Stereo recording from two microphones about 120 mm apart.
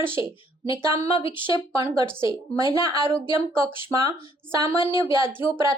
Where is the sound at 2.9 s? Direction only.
20° right (ahead or behind).